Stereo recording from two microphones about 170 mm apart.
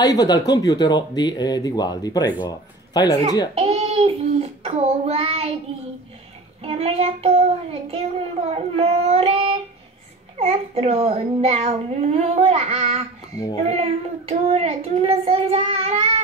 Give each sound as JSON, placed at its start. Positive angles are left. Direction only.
{"t": 0.0, "sound": "a man's voice", "side_deg": 20}
{"t": 3.5, "sound": "child singing", "side_deg": -40}
{"t": 6.6, "sound": "child singing", "side_deg": -35}